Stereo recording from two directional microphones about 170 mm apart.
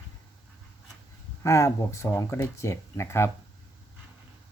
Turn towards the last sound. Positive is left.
turn(degrees=15)  # may be behind; listen again after turning